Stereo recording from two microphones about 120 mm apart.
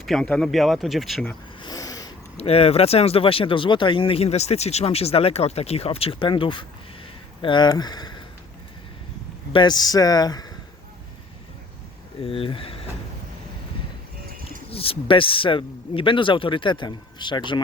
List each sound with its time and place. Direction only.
0.0 s speech: centre (ahead or behind)
1.6 s a sound: 30° left (ahead or behind)
2.4 s speech: 55° left (ahead or behind); by 8.2 s 35° left (ahead or behind)
9.5 s speech: 40° left (ahead or behind)
12.2 s speech: 50° left (ahead or behind)
14.7 s speech: 50° left (ahead or behind)